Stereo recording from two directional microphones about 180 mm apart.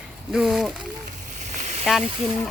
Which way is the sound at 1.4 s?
40° right (ahead or behind).